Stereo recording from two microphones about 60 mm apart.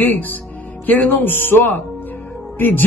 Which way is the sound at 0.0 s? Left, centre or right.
Left.